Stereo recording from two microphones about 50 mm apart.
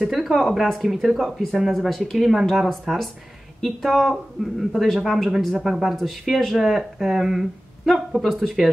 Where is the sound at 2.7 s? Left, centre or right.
Centre.